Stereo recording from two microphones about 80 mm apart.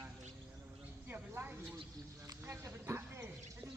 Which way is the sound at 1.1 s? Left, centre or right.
Right.